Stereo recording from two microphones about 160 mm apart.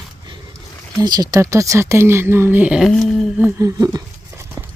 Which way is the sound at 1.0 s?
25° right (ahead or behind).